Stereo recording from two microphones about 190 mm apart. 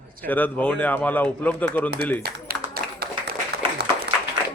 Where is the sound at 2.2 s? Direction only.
55° right (ahead or behind).